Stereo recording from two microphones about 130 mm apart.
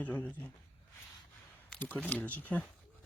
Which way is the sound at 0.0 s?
10° left (ahead or behind).